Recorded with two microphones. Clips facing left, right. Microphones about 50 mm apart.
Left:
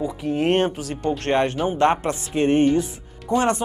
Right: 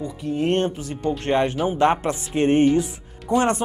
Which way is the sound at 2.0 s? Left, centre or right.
Centre.